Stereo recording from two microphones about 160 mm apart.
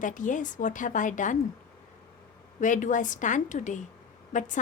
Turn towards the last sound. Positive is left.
turn(degrees=50)  # may be behind; listen again after turning